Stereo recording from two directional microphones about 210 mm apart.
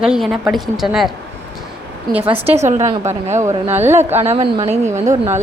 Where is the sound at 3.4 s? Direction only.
10° right (ahead or behind).